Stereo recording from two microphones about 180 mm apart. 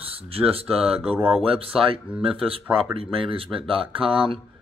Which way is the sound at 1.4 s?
30° right (ahead or behind).